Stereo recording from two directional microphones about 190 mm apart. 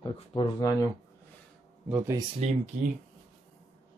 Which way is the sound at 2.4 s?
35° right (ahead or behind).